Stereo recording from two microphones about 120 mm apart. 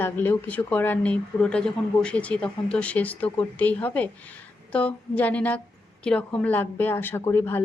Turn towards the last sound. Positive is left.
turn(degrees=20)  # may be behind; listen again after turning